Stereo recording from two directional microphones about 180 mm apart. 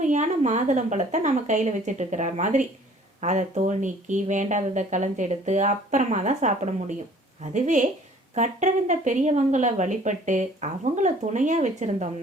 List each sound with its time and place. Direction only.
0.0 s a woman's voice: 45° right (ahead or behind)